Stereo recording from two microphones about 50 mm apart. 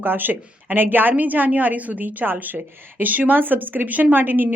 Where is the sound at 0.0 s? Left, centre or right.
Right.